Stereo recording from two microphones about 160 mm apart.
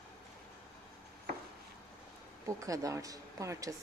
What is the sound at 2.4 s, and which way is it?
Speech, 20° right (ahead or behind).